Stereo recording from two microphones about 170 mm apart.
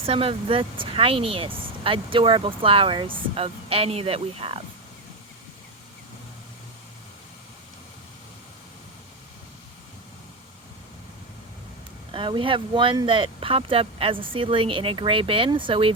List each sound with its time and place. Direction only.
0.0 s speech: 35° right (ahead or behind)
12.1 s speech: 30° right (ahead or behind)